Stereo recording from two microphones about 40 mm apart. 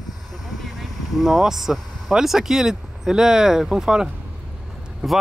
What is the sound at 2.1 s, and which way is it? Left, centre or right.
Speech, centre.